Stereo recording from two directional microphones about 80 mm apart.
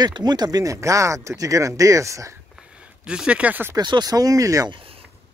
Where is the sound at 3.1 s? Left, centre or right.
Centre.